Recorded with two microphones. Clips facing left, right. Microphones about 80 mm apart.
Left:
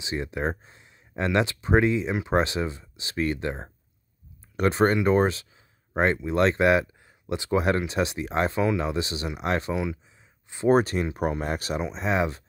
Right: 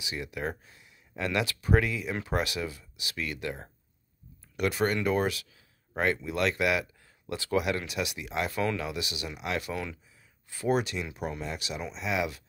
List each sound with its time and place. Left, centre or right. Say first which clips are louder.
0.0 s speech: left 6 dB; left
7.6 s speech: left 7 dB; left